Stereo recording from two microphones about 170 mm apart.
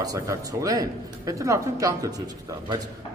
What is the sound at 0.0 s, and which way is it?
A man's voice, 20° right (ahead or behind).